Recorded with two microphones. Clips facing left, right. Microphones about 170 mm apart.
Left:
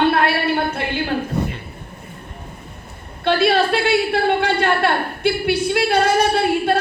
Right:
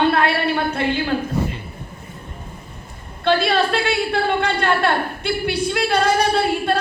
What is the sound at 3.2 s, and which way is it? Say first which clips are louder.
A woman's voice: left 1 dB; 60° left (ahead or behind).